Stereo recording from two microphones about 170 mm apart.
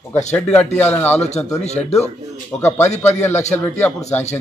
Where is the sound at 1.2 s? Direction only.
40° left (ahead or behind).